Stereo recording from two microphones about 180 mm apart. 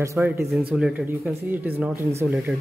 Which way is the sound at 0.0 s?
15° right (ahead or behind).